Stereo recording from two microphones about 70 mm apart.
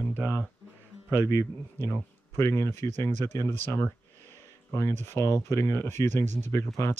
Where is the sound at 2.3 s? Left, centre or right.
Left.